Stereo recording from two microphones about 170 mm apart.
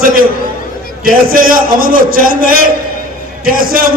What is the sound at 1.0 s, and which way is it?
A man's voice, 55° right (ahead or behind).